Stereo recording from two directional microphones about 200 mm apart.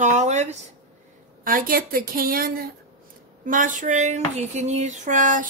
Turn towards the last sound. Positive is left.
turn(degrees=-40)  # may be behind; listen again after turning